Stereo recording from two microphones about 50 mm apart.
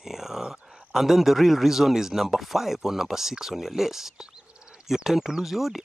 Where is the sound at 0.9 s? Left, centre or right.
Centre.